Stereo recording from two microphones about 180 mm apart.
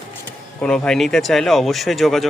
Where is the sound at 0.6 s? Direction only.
5° left (ahead or behind).